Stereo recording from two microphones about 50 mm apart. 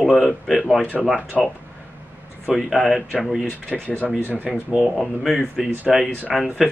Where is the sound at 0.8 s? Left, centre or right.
Left.